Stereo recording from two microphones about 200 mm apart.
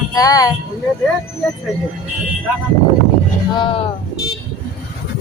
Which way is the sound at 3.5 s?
25° left (ahead or behind).